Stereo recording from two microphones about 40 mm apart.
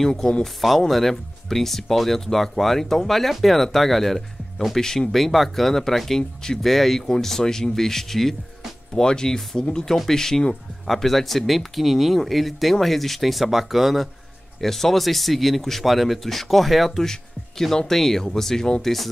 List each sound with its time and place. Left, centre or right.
0.2 s speech: centre
0.6 s speech: centre